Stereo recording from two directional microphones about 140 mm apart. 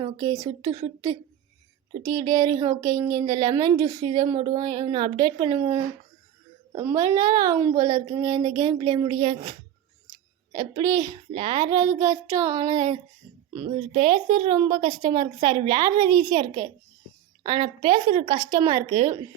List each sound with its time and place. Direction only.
0.0 s speech: 25° right (ahead or behind)
6.9 s speech: 30° right (ahead or behind)
10.5 s speech: 30° right (ahead or behind)
13.6 s a woman's voice: 40° right (ahead or behind)
17.4 s a woman's voice: 35° right (ahead or behind)